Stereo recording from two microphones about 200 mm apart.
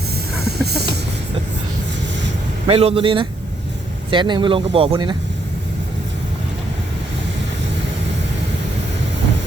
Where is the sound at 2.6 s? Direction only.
30° right (ahead or behind).